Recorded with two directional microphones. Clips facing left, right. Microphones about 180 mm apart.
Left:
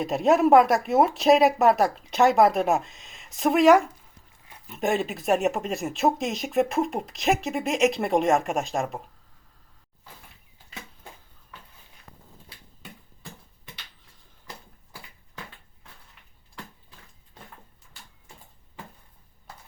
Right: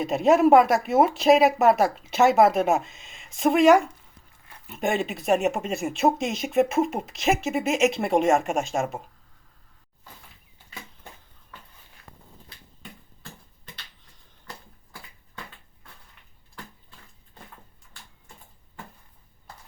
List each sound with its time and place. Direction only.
0.0 s speech: centre (ahead or behind)